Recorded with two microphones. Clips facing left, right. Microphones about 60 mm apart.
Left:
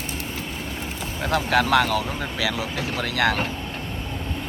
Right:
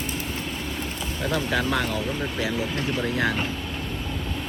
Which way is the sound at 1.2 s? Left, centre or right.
Left.